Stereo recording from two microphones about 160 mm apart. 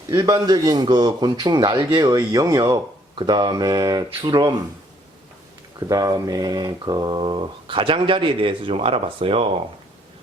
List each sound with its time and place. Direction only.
0.1 s a man's voice: 20° right (ahead or behind)
5.9 s mantra: 20° right (ahead or behind)